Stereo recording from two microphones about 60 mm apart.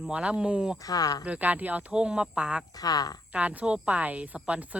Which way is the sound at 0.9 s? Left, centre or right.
Left.